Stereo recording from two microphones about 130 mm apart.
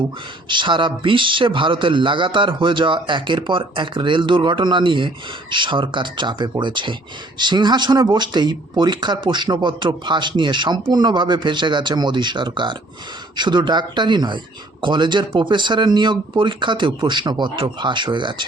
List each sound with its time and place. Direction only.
0.4 s speech: 35° right (ahead or behind)